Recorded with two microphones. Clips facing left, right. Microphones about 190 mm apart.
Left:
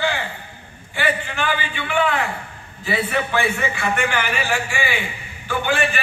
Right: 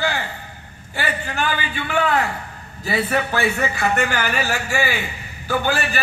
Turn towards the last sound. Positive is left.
turn(degrees=-40)  # may be behind; listen again after turning